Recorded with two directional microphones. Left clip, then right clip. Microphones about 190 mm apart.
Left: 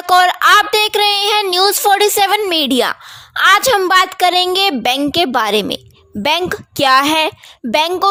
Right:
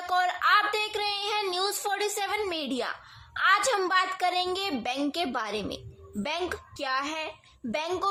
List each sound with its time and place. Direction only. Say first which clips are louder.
0.0 s speech: left 15 dB; 55° left (ahead or behind)